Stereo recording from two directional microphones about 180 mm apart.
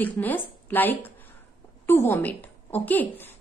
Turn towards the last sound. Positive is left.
turn(degrees=10)  # may be behind; listen again after turning